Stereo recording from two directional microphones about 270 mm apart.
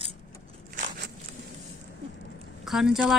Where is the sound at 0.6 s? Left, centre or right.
Right.